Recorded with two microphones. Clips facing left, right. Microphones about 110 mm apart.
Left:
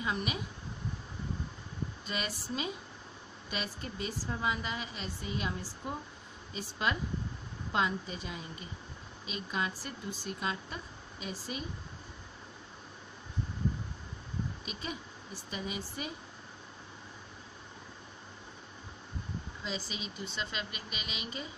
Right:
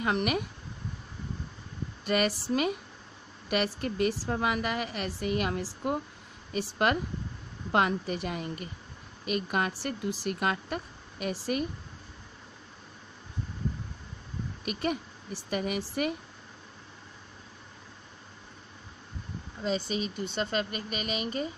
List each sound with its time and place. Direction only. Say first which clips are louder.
0.0 s speech: right 7 dB; 65° right (ahead or behind)
2.0 s a woman's voice: right 12 dB; 70° right (ahead or behind)
14.6 s speech: right 10 dB; 60° right (ahead or behind); by 16.2 s 80° right
19.6 s speech: right 11 dB; 45° right (ahead or behind)